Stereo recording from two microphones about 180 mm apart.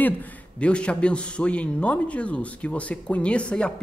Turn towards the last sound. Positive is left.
turn(degrees=5)  # may be behind; listen again after turning